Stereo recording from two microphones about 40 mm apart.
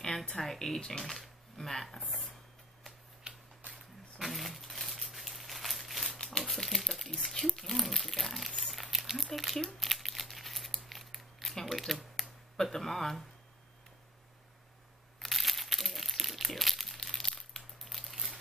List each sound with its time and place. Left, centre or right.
0.0 s speech: centre
3.3 s a sound: right
4.2 s a sound: centre
6.1 s crumpling: centre
6.4 s a sound: centre
7.2 s speech: centre
9.8 s crumpling: centre
11.5 s speech: centre
15.1 s crumpling: centre